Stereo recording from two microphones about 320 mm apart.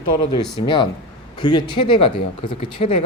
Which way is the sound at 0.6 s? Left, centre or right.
Centre.